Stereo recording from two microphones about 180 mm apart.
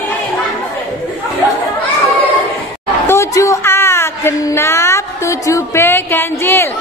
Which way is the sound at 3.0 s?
15° left (ahead or behind).